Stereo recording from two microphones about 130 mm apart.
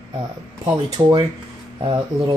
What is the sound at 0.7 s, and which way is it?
Speech, 35° right (ahead or behind).